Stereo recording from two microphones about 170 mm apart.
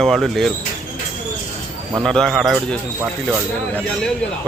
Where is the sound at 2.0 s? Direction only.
Centre (ahead or behind).